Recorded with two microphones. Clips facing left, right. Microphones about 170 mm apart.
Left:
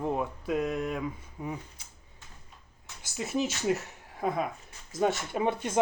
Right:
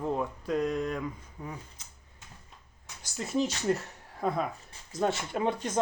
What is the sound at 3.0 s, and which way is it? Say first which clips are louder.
Speech: right 1 dB; 5° left (ahead or behind).